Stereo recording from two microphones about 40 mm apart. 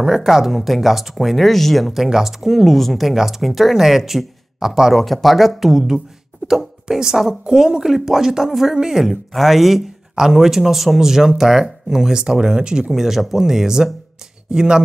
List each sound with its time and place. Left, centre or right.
0.0 s speech: centre
12.9 s speech: centre